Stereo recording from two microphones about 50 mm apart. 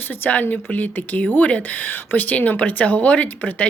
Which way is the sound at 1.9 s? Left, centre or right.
Left.